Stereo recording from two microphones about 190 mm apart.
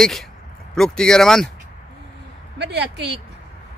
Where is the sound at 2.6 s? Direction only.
60° right (ahead or behind).